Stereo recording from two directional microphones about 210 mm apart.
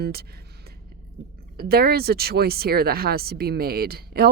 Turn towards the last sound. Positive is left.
turn(degrees=-50)  # may be behind; listen again after turning